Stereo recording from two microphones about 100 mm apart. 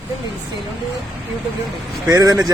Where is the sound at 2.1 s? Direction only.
35° right (ahead or behind).